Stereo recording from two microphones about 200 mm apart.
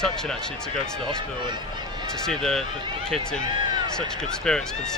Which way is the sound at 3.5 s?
20° right (ahead or behind).